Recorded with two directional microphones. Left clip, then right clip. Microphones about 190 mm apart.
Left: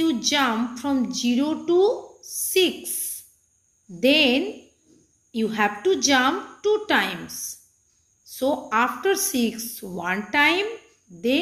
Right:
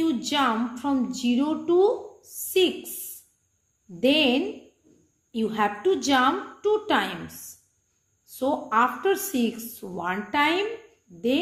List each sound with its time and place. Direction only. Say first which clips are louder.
0.0 s a woman's voice: left 2 dB; 5° left (ahead or behind)
4.0 s a woman's voice: left 3 dB; 5° left (ahead or behind)
8.4 s a woman's voice: left 1 dB; 5° left (ahead or behind)